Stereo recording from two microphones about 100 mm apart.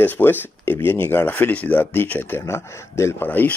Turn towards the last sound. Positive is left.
turn(degrees=20)  # may be behind; listen again after turning